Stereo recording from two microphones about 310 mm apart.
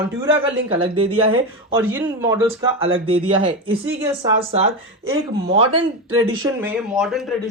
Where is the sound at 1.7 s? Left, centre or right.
Centre.